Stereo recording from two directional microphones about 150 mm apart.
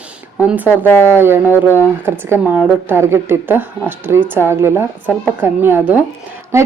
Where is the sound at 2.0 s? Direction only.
15° right (ahead or behind).